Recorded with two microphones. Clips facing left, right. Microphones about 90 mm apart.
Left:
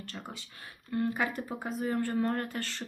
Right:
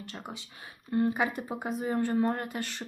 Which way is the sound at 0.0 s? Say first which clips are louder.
Right 1 dB; 15° right (ahead or behind).